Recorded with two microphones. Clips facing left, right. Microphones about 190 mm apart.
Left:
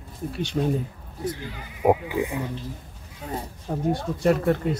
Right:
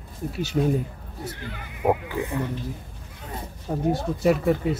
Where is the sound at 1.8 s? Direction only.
10° left (ahead or behind).